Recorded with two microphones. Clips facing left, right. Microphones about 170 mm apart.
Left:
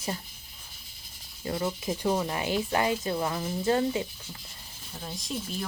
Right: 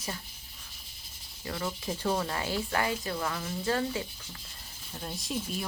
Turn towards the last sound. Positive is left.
turn(degrees=0)  # may be behind; listen again after turning